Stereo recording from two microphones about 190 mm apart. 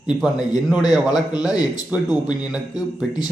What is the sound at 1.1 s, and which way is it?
Speech, 20° left (ahead or behind).